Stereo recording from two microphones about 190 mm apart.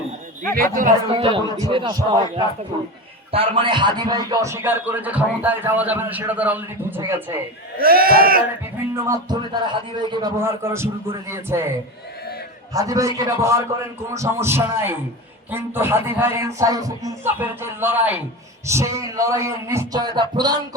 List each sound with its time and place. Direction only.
0.5 s speech: 45° right (ahead or behind)
1.1 s speech: 30° right (ahead or behind); by 7.1 s 10° right (ahead or behind)
7.8 s speech: 50° right (ahead or behind)
9.0 s speech: 25° right (ahead or behind)
12.7 s speech: 15° right (ahead or behind)